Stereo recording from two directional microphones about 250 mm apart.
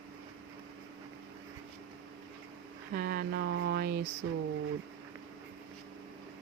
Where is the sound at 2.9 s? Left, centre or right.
Right.